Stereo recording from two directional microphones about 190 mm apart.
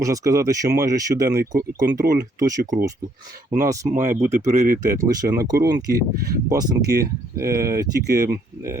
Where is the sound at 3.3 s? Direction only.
50° right (ahead or behind).